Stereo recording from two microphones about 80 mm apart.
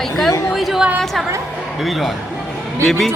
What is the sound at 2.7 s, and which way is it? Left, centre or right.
Speech, right.